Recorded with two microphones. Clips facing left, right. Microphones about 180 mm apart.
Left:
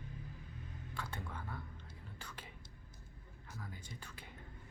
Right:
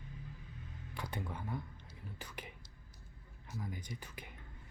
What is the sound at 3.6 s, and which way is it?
Speech, 15° right (ahead or behind).